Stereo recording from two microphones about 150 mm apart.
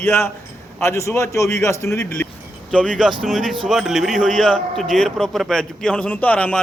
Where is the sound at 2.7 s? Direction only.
5° left (ahead or behind).